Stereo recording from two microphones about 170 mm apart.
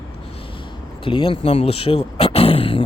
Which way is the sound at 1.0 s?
30° left (ahead or behind).